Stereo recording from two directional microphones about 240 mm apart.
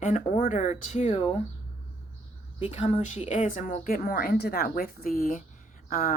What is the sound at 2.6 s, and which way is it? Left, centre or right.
A woman's voice, left.